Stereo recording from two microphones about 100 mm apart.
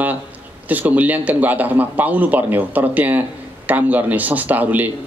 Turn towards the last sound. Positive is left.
turn(degrees=-15)  # may be behind; listen again after turning